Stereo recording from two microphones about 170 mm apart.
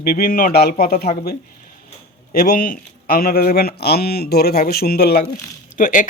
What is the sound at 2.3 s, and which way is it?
Speech, 60° left (ahead or behind).